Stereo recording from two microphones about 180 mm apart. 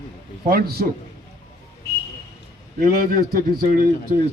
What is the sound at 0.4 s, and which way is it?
Speech, 60° right (ahead or behind).